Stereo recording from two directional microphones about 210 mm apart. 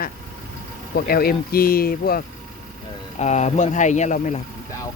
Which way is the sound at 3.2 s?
30° left (ahead or behind).